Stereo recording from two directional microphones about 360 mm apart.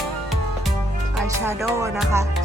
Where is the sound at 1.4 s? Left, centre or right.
Centre.